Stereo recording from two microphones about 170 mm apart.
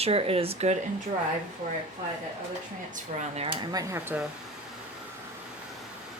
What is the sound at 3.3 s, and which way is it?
Speech, 35° right (ahead or behind).